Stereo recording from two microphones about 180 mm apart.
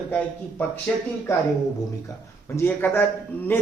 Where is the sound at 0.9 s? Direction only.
10° left (ahead or behind).